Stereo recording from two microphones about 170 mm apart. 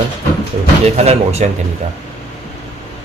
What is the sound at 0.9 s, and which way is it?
Speech, 40° right (ahead or behind).